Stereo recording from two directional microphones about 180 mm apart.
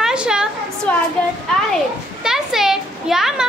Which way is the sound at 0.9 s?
5° left (ahead or behind).